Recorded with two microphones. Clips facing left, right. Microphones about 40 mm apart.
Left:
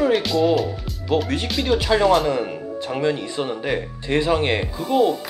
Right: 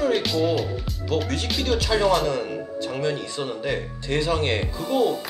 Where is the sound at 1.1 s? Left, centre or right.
Centre.